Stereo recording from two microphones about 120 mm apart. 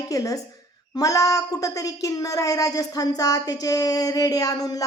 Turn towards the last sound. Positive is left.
turn(degrees=30)  # may be behind; listen again after turning